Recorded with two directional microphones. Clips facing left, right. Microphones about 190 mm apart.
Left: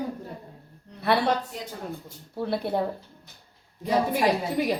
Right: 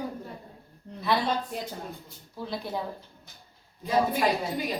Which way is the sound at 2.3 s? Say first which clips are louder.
Left 7 dB; 60° left (ahead or behind).